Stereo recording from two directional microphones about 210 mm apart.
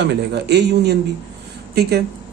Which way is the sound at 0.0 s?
55° right (ahead or behind).